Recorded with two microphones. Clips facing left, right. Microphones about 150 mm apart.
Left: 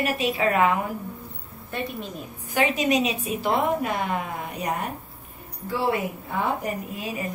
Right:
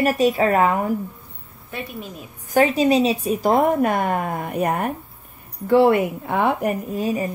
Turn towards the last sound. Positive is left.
turn(degrees=-40)  # may be behind; listen again after turning